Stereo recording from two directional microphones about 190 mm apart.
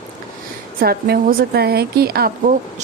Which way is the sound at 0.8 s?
55° right (ahead or behind).